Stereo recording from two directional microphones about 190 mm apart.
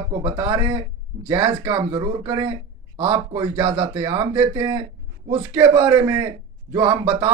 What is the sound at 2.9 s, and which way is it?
Speech, 30° right (ahead or behind).